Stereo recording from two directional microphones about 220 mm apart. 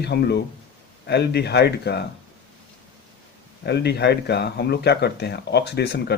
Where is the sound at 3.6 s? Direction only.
50° left (ahead or behind).